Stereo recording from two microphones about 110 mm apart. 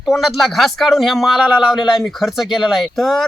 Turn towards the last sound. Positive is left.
turn(degrees=0)  # may be behind; listen again after turning